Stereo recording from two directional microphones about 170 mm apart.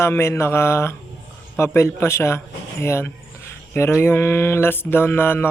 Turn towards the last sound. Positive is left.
turn(degrees=10)  # may be behind; listen again after turning